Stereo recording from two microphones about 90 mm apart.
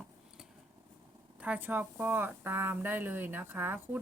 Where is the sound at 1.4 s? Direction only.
20° right (ahead or behind).